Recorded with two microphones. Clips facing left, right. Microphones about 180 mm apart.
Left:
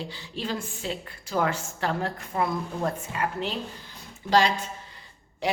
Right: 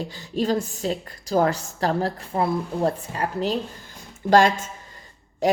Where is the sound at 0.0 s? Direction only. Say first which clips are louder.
Right 8 dB; 40° right (ahead or behind).